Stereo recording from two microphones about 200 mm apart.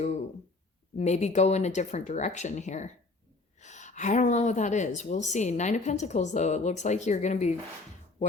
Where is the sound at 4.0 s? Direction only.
35° left (ahead or behind).